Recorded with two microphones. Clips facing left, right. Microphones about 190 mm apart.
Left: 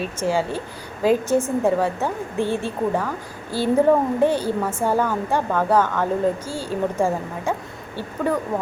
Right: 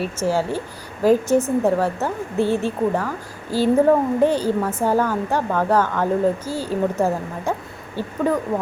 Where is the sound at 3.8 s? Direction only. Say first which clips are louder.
Right 1 dB; 10° left (ahead or behind).